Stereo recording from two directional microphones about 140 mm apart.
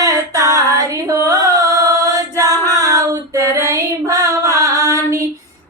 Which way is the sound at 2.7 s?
25° right (ahead or behind).